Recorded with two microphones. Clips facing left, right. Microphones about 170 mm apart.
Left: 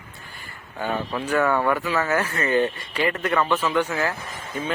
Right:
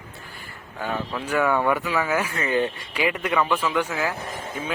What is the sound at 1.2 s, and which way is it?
Speech, 10° right (ahead or behind).